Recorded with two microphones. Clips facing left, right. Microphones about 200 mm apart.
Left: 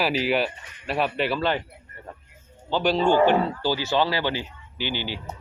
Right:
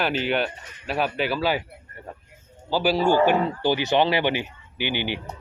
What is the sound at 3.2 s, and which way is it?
A man's voice, 20° right (ahead or behind).